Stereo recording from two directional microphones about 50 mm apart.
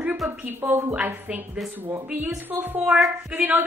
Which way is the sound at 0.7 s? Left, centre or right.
Right.